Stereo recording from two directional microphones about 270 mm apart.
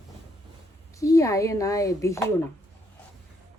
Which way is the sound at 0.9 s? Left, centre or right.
Centre.